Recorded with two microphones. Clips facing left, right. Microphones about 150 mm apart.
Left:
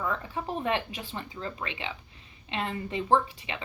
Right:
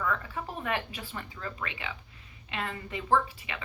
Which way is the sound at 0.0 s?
25° left (ahead or behind).